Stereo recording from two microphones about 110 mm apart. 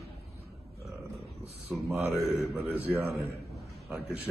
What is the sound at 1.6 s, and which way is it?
Speech, 20° right (ahead or behind).